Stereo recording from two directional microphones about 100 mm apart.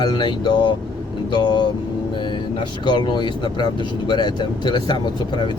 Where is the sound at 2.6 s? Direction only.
50° left (ahead or behind).